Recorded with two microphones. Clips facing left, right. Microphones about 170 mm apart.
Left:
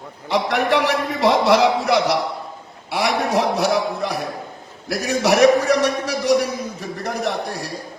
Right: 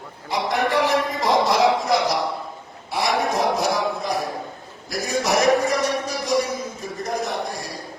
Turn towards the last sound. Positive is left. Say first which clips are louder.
# left 3 dB
turn(degrees=70)  # may be behind; listen again after turning